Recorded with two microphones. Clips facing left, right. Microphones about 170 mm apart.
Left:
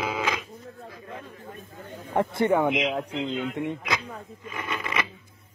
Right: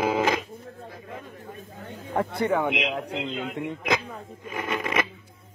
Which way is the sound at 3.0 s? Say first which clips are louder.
Left 2 dB; 60° right (ahead or behind).